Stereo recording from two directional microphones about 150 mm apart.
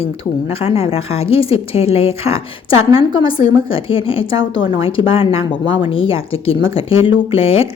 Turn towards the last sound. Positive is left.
turn(degrees=40)  # may be behind; listen again after turning